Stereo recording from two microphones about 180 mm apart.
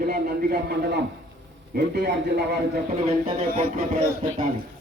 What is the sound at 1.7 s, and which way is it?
Speech, 70° right (ahead or behind).